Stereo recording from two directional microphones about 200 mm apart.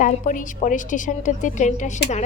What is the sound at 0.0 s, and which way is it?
A woman's voice, 40° left (ahead or behind).